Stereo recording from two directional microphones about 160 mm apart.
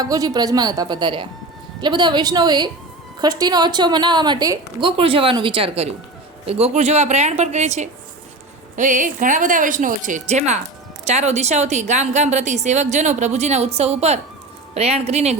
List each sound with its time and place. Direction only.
0.0 s a woman's voice: 20° right (ahead or behind); by 15.4 s 40° right (ahead or behind)